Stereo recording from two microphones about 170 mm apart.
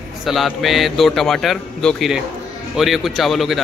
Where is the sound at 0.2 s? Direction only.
Centre (ahead or behind).